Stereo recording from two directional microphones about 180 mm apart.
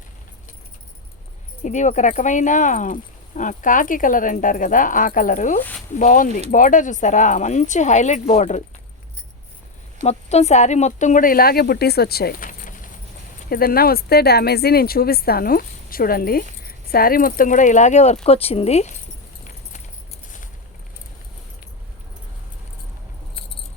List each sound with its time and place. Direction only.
1.6 s speech: 40° left (ahead or behind)
10.0 s speech: 35° left (ahead or behind)